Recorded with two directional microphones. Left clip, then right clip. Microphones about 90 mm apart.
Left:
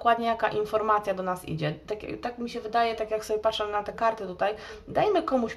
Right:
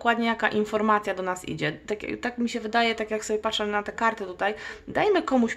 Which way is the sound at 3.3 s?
45° right (ahead or behind).